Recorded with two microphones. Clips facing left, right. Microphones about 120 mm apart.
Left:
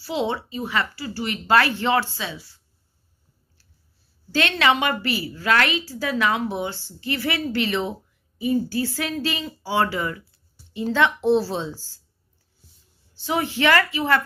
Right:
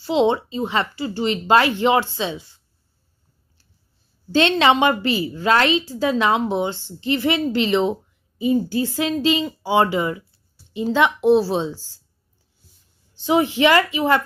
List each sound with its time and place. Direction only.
0.0 s a woman's voice: 25° right (ahead or behind)
4.3 s a woman's voice: 25° right (ahead or behind)
13.2 s a woman's voice: 20° right (ahead or behind)